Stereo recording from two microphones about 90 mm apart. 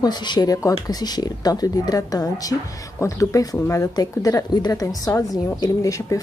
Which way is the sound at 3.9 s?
45° left (ahead or behind).